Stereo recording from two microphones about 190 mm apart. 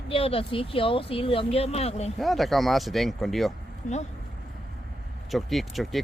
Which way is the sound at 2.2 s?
Centre (ahead or behind).